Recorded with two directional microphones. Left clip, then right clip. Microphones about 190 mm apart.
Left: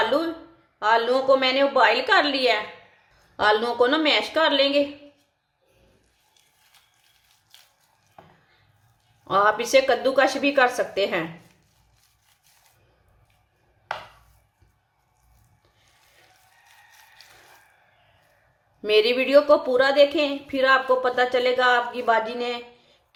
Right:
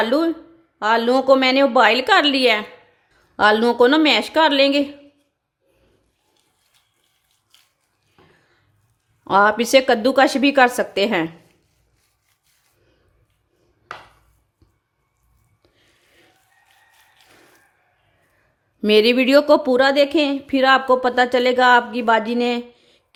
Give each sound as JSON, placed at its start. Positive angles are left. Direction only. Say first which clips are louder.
{"t": 0.0, "sound": "a woman's voice", "louder": "right 4 dB", "side_deg": -50}
{"t": 9.2, "sound": "a woman's voice", "louder": "right 5 dB", "side_deg": -50}
{"t": 18.8, "sound": "a woman's voice", "louder": "right 5 dB", "side_deg": -50}